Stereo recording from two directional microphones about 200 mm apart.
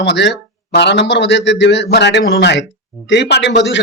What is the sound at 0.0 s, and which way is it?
Speech, 60° left (ahead or behind).